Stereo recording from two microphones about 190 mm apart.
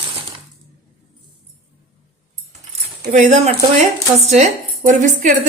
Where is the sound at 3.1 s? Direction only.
40° right (ahead or behind).